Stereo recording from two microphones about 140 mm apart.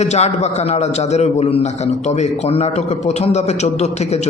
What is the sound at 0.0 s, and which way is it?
A man's voice, 50° left (ahead or behind).